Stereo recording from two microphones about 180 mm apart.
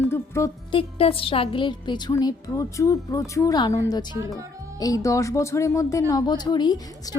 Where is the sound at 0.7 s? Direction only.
30° left (ahead or behind).